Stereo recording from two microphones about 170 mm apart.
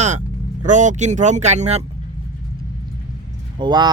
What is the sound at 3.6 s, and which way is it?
Speech, 25° right (ahead or behind).